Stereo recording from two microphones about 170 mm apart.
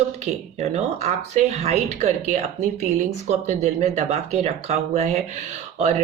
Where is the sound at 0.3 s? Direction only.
40° right (ahead or behind).